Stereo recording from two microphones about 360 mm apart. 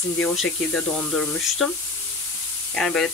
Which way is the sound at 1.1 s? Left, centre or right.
Centre.